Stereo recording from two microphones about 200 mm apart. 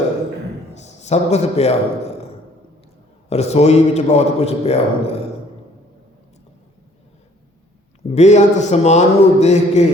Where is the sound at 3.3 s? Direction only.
35° left (ahead or behind).